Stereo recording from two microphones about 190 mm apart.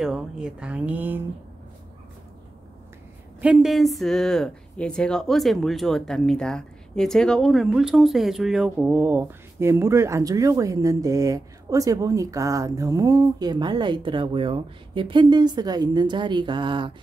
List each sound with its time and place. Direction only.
0.0 s speech: 5° right (ahead or behind)
3.3 s speech: 5° right (ahead or behind); by 16.9 s 25° right (ahead or behind)